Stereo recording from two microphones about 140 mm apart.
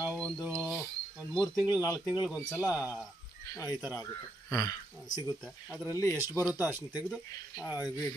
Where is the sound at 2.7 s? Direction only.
10° right (ahead or behind).